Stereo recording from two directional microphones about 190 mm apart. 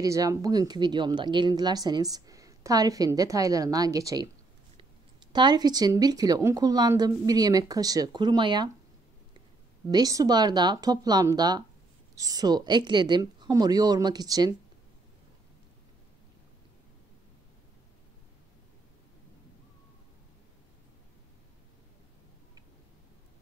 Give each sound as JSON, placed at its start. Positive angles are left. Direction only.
{"t": 0.0, "sound": "speech", "side_deg": -15}
{"t": 9.8, "sound": "speech", "side_deg": -20}